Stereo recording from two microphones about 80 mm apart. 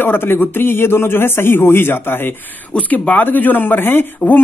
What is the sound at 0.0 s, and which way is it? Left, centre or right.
Speech, left.